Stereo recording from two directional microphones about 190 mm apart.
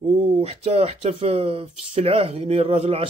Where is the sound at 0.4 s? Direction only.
35° right (ahead or behind).